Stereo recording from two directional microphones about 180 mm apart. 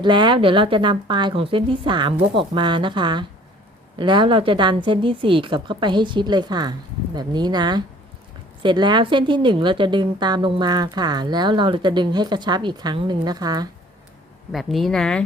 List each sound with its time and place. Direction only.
0.0 s a woman's voice: 25° right (ahead or behind)
14.5 s speech: centre (ahead or behind)